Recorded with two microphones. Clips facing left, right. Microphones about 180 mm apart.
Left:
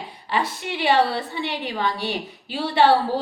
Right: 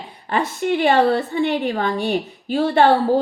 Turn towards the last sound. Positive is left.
turn(degrees=-45)  # may be behind; listen again after turning